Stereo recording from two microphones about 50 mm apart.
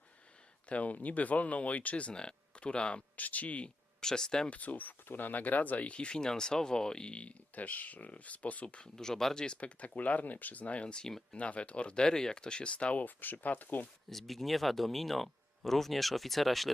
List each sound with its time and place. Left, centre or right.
0.7 s speech: left
3.2 s speech: left
4.0 s speech: centre
4.4 s speech: left
9.0 s speech: centre; by 13.8 s left
14.1 s speech: centre